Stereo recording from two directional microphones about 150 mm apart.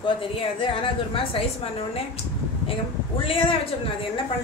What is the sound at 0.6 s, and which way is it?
A woman's voice, 35° left (ahead or behind).